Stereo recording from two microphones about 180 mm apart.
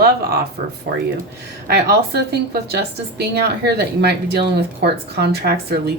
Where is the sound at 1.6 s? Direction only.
60° right (ahead or behind).